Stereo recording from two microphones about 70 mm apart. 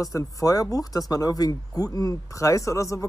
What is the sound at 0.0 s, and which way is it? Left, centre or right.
Speech, left.